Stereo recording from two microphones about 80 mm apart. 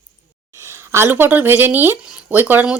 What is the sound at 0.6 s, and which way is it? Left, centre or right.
A woman's voice, right.